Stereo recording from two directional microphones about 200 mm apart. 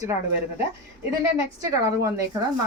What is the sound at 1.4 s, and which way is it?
Speech, 15° right (ahead or behind).